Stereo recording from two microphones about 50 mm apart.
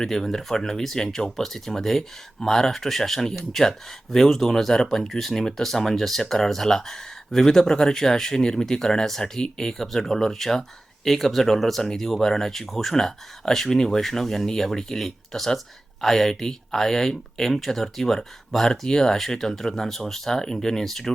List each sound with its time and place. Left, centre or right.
0.0 s speech: centre